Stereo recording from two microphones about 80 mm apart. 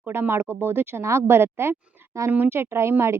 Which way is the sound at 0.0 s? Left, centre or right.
Right.